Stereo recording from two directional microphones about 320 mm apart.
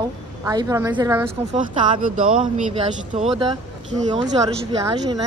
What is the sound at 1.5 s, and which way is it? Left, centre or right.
Speech, right.